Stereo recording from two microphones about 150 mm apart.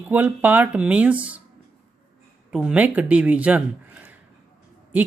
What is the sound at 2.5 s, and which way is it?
Speech, 5° right (ahead or behind).